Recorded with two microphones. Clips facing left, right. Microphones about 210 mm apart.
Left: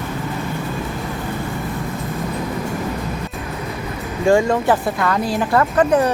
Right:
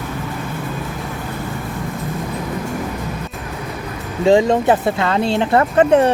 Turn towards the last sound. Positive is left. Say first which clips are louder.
# right 3 dB
turn(degrees=-25)  # may be behind; listen again after turning